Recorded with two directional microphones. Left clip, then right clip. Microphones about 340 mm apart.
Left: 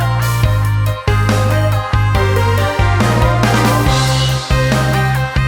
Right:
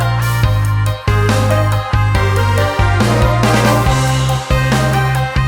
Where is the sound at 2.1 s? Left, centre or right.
Centre.